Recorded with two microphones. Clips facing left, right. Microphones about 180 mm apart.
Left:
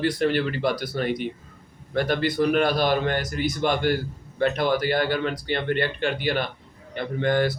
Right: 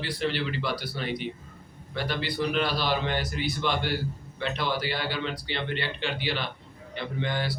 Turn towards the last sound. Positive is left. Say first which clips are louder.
# left 8 dB
turn(degrees=50)  # may be behind; listen again after turning